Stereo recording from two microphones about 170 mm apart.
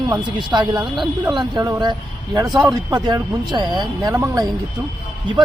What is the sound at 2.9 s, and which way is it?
Speech, 25° right (ahead or behind).